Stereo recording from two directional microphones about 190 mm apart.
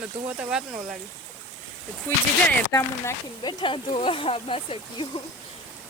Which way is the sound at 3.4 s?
25° left (ahead or behind).